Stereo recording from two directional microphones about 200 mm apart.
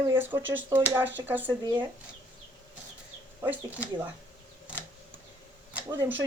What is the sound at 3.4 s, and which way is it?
Speech, 10° right (ahead or behind).